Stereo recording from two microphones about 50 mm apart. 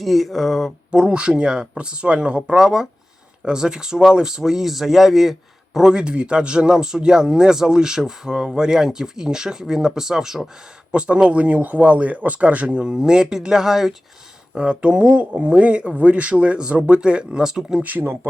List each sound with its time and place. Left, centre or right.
0.0 s speech: centre
0.9 s a man's voice: centre
10.9 s speech: right
14.5 s speech: centre
18.0 s speech: right